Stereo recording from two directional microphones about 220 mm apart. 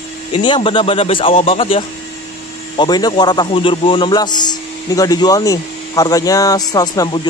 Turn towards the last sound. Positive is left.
turn(degrees=20)  # may be behind; listen again after turning